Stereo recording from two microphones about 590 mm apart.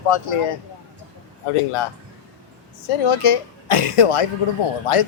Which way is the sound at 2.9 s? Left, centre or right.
Left.